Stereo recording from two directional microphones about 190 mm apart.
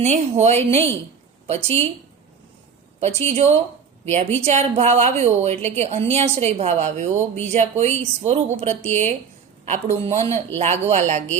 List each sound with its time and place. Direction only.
0.0 s a woman's voice: 35° right (ahead or behind)
3.0 s a woman's voice: 35° right (ahead or behind)